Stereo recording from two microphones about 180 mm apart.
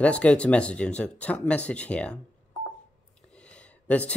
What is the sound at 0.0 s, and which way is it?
Speech, 5° left (ahead or behind).